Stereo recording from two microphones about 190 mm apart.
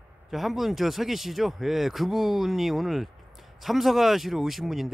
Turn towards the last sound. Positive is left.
turn(degrees=0)  # may be behind; listen again after turning